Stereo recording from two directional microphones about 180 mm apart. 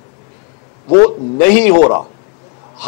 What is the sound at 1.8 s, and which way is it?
Speech, 25° left (ahead or behind).